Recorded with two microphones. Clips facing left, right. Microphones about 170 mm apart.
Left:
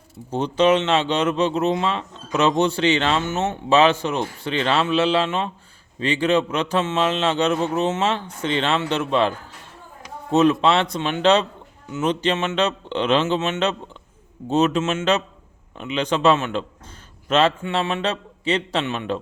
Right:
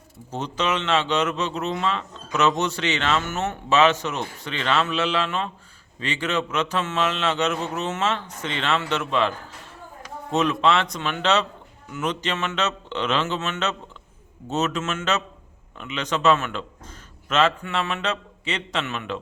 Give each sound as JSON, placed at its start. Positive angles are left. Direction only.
{"t": 0.3, "sound": "speech", "side_deg": 30}
{"t": 10.3, "sound": "speech", "side_deg": 30}